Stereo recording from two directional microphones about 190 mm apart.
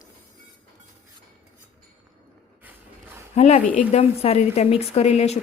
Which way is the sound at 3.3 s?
35° left (ahead or behind).